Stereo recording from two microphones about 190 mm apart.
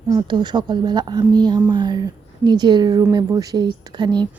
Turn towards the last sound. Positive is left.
turn(degrees=-25)  # may be behind; listen again after turning